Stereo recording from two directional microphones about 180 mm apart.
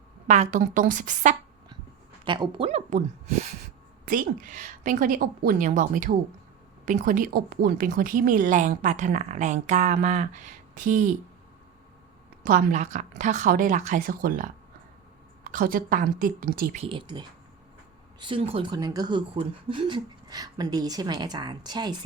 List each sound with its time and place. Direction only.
0.3 s a woman's voice: 40° right (ahead or behind)
2.2 s a woman's voice: 25° right (ahead or behind); by 11.1 s 45° right (ahead or behind)
12.5 s a woman's voice: 50° right (ahead or behind)
16.7 s speech: 30° right (ahead or behind)